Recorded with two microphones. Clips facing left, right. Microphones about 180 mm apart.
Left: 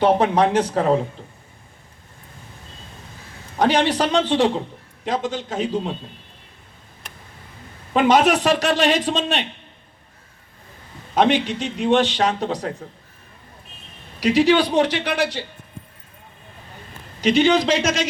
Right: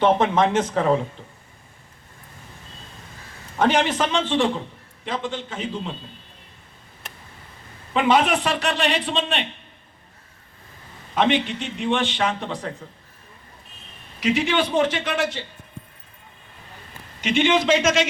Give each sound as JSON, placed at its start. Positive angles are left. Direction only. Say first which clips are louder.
{"t": 0.0, "sound": "a man's voice", "louder": "left 2 dB", "side_deg": 35}
{"t": 3.6, "sound": "a man's voice", "louder": "left 2 dB", "side_deg": 35}
{"t": 7.9, "sound": "a man's voice", "louder": "left 3 dB", "side_deg": 40}
{"t": 11.1, "sound": "a man's voice", "louder": "left 3 dB", "side_deg": 40}
{"t": 14.2, "sound": "a man's voice", "louder": "left 5 dB", "side_deg": 40}
{"t": 14.8, "sound": "speech", "louder": "left 2 dB", "side_deg": 70}
{"t": 17.2, "sound": "a man's voice", "louder": "left 4 dB", "side_deg": 35}